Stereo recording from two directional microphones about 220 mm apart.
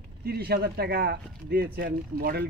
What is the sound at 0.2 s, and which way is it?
Speech, 45° right (ahead or behind).